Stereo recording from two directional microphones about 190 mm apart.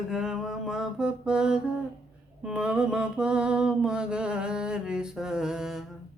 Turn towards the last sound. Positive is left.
turn(degrees=-5)  # may be behind; listen again after turning